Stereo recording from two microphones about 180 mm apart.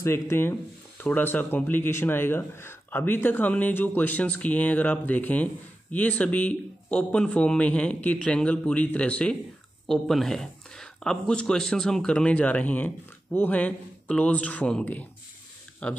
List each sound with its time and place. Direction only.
0.0 s speech: 15° left (ahead or behind)